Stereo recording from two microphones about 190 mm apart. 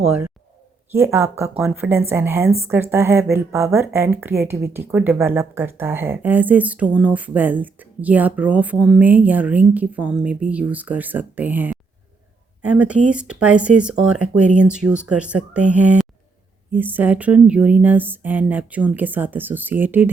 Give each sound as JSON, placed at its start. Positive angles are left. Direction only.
{"t": 0.0, "sound": "a woman's voice", "side_deg": -5}